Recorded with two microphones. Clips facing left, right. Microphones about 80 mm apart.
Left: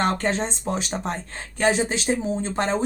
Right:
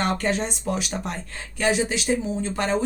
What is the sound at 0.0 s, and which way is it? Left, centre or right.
Speech, left.